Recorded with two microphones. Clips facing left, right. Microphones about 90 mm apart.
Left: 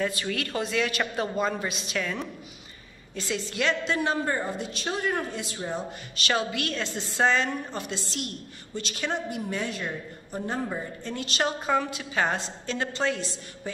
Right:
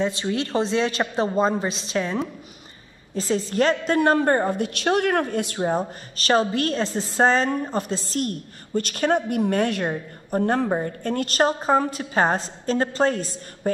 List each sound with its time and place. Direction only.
0.0 s a woman's voice: 25° right (ahead or behind); by 13.4 s 45° right (ahead or behind)